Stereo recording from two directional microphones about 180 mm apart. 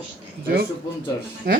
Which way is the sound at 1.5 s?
55° right (ahead or behind).